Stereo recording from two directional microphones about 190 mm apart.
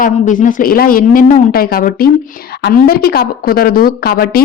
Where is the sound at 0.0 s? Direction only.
45° left (ahead or behind).